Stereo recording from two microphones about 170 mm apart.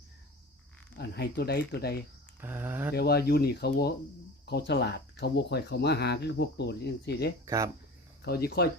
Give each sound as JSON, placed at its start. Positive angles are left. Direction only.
{"t": 0.9, "sound": "speech", "side_deg": 70}
{"t": 2.4, "sound": "speech", "side_deg": -15}
{"t": 2.9, "sound": "speech", "side_deg": 70}
{"t": 4.4, "sound": "speech", "side_deg": 80}
{"t": 7.4, "sound": "speech", "side_deg": -20}
{"t": 8.2, "sound": "speech", "side_deg": 65}